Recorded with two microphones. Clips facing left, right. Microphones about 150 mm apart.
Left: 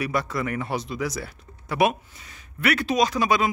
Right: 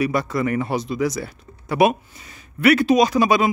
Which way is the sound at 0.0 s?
Centre (ahead or behind).